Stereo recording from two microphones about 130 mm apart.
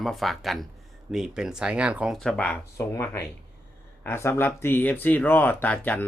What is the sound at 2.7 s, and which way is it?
Speech, 20° left (ahead or behind).